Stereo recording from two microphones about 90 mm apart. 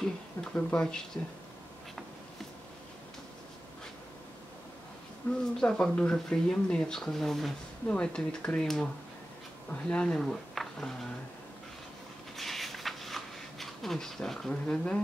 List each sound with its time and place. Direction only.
0.0 s speech: 15° left (ahead or behind)
5.2 s speech: 25° left (ahead or behind)
5.6 s speech: 10° left (ahead or behind)
12.4 s a sound: centre (ahead or behind)